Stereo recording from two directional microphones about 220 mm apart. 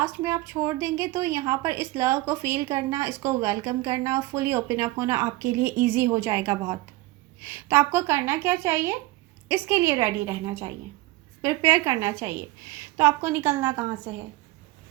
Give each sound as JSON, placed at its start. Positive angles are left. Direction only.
{"t": 0.0, "sound": "a woman's voice", "side_deg": -10}